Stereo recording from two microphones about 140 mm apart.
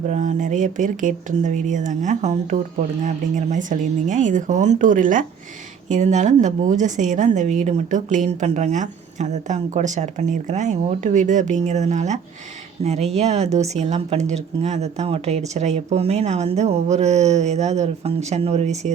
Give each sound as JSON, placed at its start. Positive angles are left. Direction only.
{"t": 0.1, "sound": "a woman's voice", "side_deg": -55}
{"t": 5.9, "sound": "a woman's voice", "side_deg": -55}